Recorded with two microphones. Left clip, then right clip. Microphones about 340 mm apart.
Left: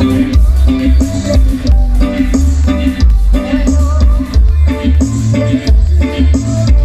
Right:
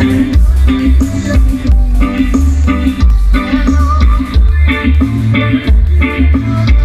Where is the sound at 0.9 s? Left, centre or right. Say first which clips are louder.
Left 1 dB; left.